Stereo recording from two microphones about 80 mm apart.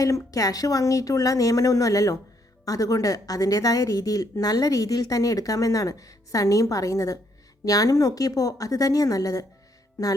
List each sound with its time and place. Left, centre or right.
0.0 s speech: left